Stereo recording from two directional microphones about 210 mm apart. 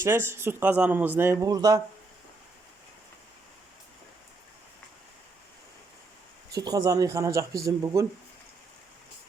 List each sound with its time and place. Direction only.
0.0 s a man's voice: 10° right (ahead or behind)
6.5 s a man's voice: 15° right (ahead or behind)